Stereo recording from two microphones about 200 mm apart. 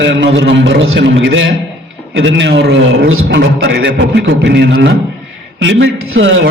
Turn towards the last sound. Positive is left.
turn(degrees=-70)  # may be behind; listen again after turning